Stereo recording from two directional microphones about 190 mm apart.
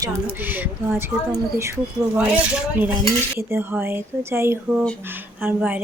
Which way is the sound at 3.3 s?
10° right (ahead or behind).